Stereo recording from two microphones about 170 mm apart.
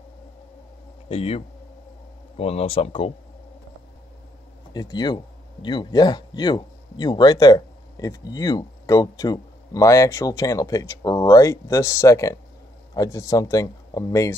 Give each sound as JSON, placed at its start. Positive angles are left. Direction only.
{"t": 1.0, "sound": "speech", "side_deg": 35}
{"t": 4.7, "sound": "speech", "side_deg": 25}